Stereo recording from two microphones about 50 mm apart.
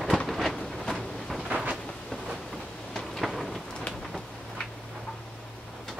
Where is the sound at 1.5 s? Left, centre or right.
Right.